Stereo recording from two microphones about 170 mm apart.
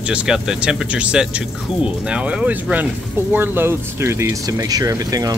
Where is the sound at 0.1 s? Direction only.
5° right (ahead or behind).